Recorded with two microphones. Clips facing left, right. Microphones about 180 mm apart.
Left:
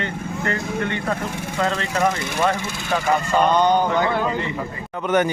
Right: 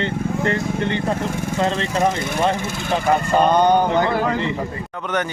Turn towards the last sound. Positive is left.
turn(degrees=10)  # may be behind; listen again after turning